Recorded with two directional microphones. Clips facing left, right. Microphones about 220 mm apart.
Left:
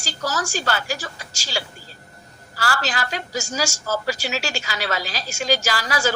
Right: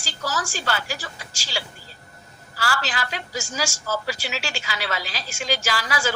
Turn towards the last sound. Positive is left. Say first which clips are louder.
# left 3 dB
turn(degrees=40)  # may be behind; listen again after turning